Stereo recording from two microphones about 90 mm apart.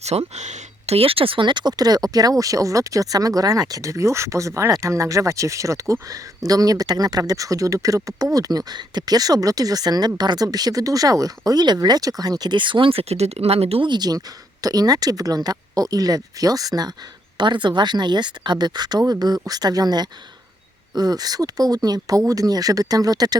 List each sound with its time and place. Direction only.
0.1 s speech: 90° right; by 16.9 s 45° right (ahead or behind)
17.3 s speech: 55° right (ahead or behind)